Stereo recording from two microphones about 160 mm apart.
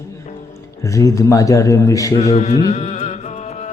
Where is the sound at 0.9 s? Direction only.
20° left (ahead or behind).